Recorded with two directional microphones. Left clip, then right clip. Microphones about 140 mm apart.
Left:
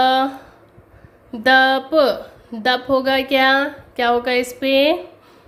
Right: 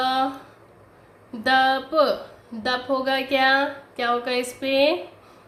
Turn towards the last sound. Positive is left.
turn(degrees=50)  # may be behind; listen again after turning